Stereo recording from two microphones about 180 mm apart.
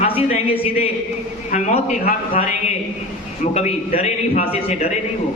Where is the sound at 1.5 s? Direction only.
45° left (ahead or behind).